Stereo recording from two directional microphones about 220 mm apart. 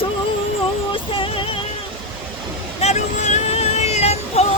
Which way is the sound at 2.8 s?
30° left (ahead or behind).